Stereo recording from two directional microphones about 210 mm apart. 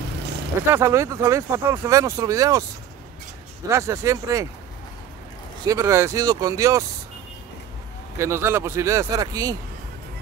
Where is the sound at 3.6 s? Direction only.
15° right (ahead or behind).